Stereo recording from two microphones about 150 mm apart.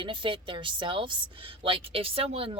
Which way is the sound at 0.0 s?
35° right (ahead or behind).